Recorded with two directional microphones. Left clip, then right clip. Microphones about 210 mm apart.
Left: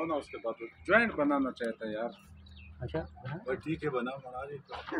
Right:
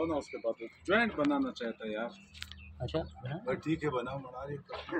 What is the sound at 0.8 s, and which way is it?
Speech, 50° right (ahead or behind).